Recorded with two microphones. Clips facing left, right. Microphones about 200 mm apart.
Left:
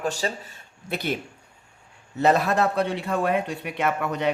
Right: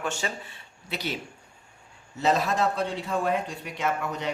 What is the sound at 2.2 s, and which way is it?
Speech, 60° left (ahead or behind).